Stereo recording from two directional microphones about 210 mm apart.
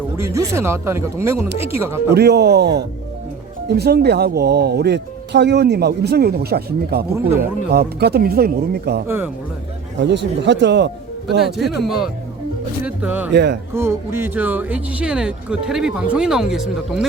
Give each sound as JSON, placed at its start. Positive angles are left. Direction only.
{"t": 0.2, "sound": "speech", "side_deg": -10}
{"t": 2.1, "sound": "speech", "side_deg": -50}
{"t": 7.3, "sound": "speech", "side_deg": -10}
{"t": 7.7, "sound": "speech", "side_deg": -50}
{"t": 9.0, "sound": "speech", "side_deg": -10}
{"t": 10.0, "sound": "speech", "side_deg": -55}
{"t": 11.3, "sound": "speech", "side_deg": 0}
{"t": 13.3, "sound": "speech", "side_deg": -55}
{"t": 13.7, "sound": "speech", "side_deg": -10}